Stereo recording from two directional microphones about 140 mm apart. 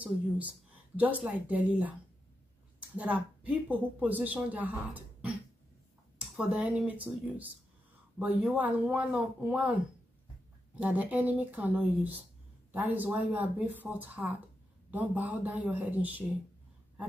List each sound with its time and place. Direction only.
0.9 s a woman's voice: 10° right (ahead or behind)
3.0 s a woman's voice: 10° right (ahead or behind)
10.8 s a woman's voice: 10° right (ahead or behind)